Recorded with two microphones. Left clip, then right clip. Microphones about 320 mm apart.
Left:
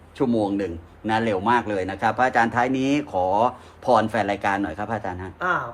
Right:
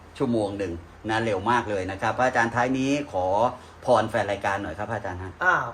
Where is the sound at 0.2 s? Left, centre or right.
Left.